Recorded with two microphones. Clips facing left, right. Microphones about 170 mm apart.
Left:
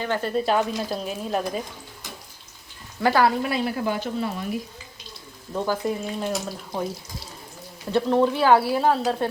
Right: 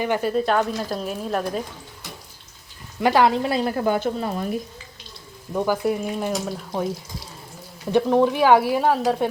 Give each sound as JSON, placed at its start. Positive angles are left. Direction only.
{"t": 0.0, "sound": "speech", "side_deg": -10}
{"t": 0.3, "sound": "a woman's voice", "side_deg": 5}
{"t": 3.0, "sound": "a woman's voice", "side_deg": -20}
{"t": 3.5, "sound": "speech", "side_deg": -40}
{"t": 5.5, "sound": "speech", "side_deg": -10}
{"t": 7.9, "sound": "speech", "side_deg": -15}